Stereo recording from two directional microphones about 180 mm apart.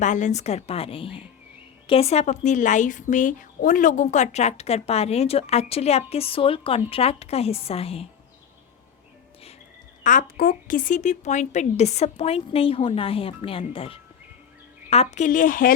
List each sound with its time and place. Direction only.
0.0 s a woman's voice: 40° left (ahead or behind)
10.0 s a woman's voice: 45° left (ahead or behind)